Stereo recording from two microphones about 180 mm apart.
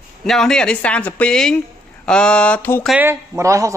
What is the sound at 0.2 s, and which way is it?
A man's voice, centre (ahead or behind).